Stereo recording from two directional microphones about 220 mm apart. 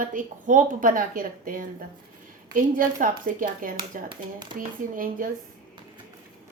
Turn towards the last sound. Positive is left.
turn(degrees=-40)  # may be behind; listen again after turning